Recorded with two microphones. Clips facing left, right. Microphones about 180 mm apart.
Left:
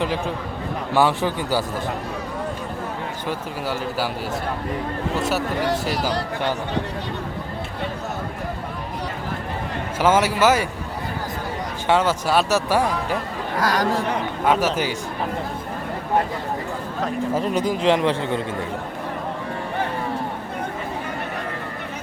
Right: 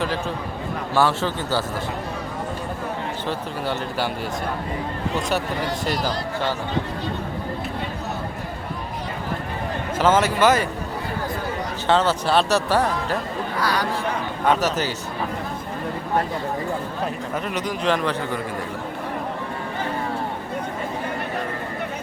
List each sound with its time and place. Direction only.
0.9 s speech: 15° left (ahead or behind)
3.2 s speech: 5° left (ahead or behind)
5.1 s speech: 5° left (ahead or behind)
10.0 s speech: 10° left (ahead or behind)
11.9 s speech: 10° left (ahead or behind)
13.6 s speech: 45° left (ahead or behind)
14.4 s speech: 10° left (ahead or behind)
17.3 s a man's voice: 30° left (ahead or behind)